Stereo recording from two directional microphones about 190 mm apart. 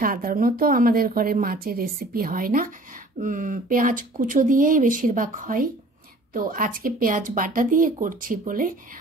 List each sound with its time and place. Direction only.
0.0 s a woman's voice: 50° right (ahead or behind)